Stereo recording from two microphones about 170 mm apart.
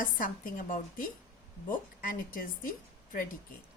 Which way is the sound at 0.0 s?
55° left (ahead or behind).